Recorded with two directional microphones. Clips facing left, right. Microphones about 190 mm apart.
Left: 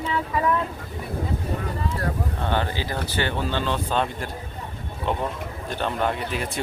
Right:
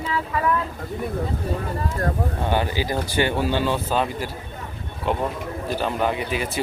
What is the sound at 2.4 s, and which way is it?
Speech, 10° right (ahead or behind).